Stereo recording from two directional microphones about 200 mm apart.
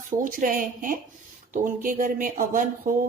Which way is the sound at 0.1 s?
40° right (ahead or behind).